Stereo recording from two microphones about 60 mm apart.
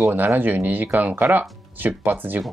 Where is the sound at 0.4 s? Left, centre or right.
Right.